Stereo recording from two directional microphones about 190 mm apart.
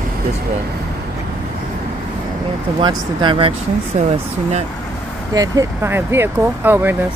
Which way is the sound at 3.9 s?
40° right (ahead or behind).